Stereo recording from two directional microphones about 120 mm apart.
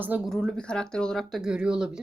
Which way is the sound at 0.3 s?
5° left (ahead or behind).